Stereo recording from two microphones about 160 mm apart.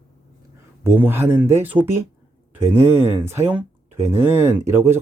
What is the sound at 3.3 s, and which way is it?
Speech, 15° right (ahead or behind).